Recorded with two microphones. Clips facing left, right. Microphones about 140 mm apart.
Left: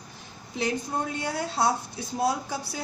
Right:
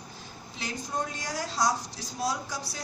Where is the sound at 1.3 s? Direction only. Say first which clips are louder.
Left 2 dB; 60° left (ahead or behind).